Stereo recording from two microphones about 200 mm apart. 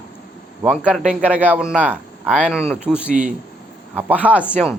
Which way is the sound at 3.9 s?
10° right (ahead or behind).